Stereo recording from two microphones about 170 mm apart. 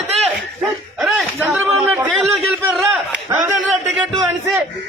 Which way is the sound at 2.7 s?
10° right (ahead or behind).